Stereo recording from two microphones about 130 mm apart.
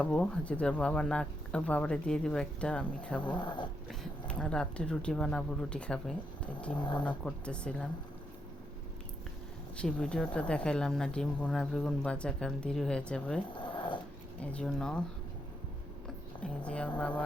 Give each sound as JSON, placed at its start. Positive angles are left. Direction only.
{"t": 0.0, "sound": "speech", "side_deg": 10}
{"t": 3.3, "sound": "speech", "side_deg": 35}
{"t": 4.3, "sound": "speech", "side_deg": 5}
{"t": 9.7, "sound": "speech", "side_deg": 5}
{"t": 14.4, "sound": "speech", "side_deg": 10}
{"t": 16.0, "sound": "a sound", "side_deg": 10}
{"t": 17.0, "sound": "speech", "side_deg": 10}